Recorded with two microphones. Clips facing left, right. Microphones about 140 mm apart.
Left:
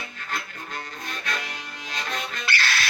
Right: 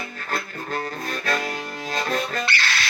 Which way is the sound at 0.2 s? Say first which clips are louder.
Right 5 dB; 45° right (ahead or behind).